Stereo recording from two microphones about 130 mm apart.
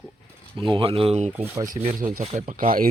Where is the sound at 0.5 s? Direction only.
40° right (ahead or behind).